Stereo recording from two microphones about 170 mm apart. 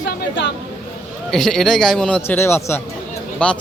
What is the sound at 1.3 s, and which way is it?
Speech, centre (ahead or behind).